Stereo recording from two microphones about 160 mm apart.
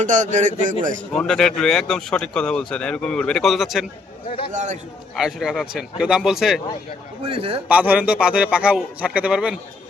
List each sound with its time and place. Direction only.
0.0 s a man's voice: 50° right (ahead or behind)
1.1 s speech: 5° left (ahead or behind)
4.5 s a man's voice: 50° right (ahead or behind)
5.1 s speech: 5° right (ahead or behind)
7.3 s a man's voice: 35° right (ahead or behind)
7.7 s a man's voice: 10° right (ahead or behind)